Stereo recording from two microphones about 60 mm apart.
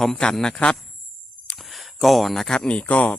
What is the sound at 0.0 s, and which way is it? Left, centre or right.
Speech, centre.